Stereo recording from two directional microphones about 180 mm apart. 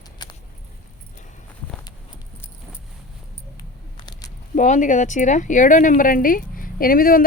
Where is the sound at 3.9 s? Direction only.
25° left (ahead or behind).